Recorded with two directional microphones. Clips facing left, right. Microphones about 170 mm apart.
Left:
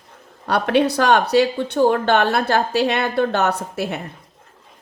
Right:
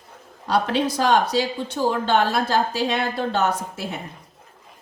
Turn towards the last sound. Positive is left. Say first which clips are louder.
# left 4 dB
turn(degrees=70)  # may be behind; listen again after turning